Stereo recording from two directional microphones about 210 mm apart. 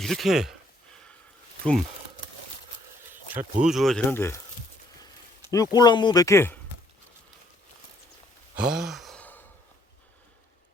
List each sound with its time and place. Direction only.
0.0 s speech: centre (ahead or behind)
3.3 s speech: 35° right (ahead or behind)
3.7 s speech: centre (ahead or behind)
5.5 s speech: 15° left (ahead or behind)
8.5 s sigh: 5° right (ahead or behind)